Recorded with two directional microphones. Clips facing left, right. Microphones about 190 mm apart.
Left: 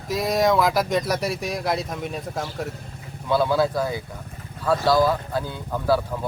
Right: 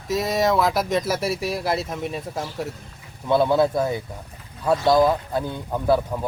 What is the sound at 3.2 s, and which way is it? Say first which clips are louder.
Speech: right 2 dB; 20° right (ahead or behind).